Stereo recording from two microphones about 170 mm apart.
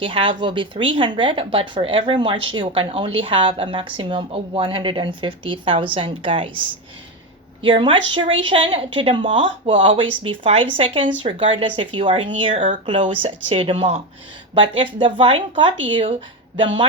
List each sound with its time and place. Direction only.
0.0 s speech: 30° right (ahead or behind)
7.6 s a woman's voice: 30° right (ahead or behind)